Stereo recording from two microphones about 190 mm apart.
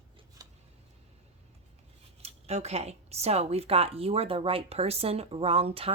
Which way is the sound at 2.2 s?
35° right (ahead or behind).